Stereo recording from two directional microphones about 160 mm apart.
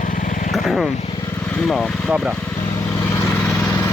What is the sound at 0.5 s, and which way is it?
Vehicle, centre (ahead or behind).